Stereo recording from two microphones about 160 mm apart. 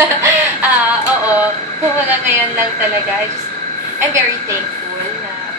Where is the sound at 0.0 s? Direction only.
15° right (ahead or behind).